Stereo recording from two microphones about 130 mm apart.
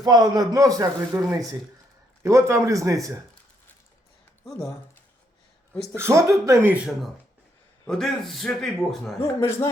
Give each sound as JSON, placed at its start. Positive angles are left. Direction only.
{"t": 0.0, "sound": "a man's voice", "side_deg": -30}
{"t": 2.2, "sound": "a man's voice", "side_deg": -20}
{"t": 5.9, "sound": "a man's voice", "side_deg": -20}
{"t": 6.7, "sound": "speech", "side_deg": -10}
{"t": 7.9, "sound": "a man's voice", "side_deg": 0}
{"t": 9.2, "sound": "a man's voice", "side_deg": 20}